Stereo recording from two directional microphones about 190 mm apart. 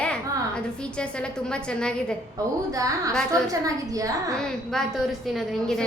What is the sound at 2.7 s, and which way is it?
A woman's voice, 15° right (ahead or behind).